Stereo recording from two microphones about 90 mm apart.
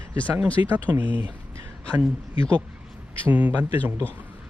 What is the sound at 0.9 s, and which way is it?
Speech, 20° right (ahead or behind).